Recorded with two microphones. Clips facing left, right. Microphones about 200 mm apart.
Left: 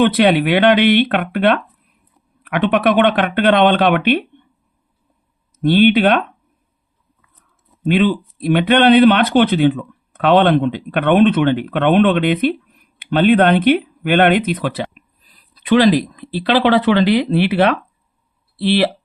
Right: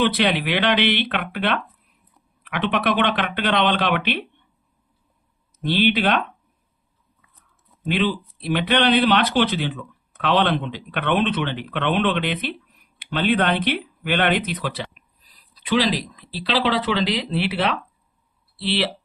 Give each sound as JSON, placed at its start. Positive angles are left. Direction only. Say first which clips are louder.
{"t": 0.0, "sound": "speech", "louder": "left 7 dB", "side_deg": 55}
{"t": 5.6, "sound": "speech", "louder": "left 8 dB", "side_deg": 55}
{"t": 7.9, "sound": "speech", "louder": "left 7 dB", "side_deg": 55}